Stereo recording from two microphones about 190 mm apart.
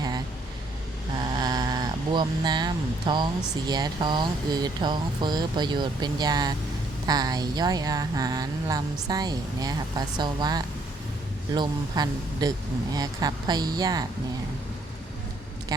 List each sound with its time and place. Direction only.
1.4 s speech: 20° right (ahead or behind)